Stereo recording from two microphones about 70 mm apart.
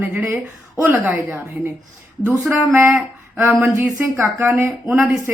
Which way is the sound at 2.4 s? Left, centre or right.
Right.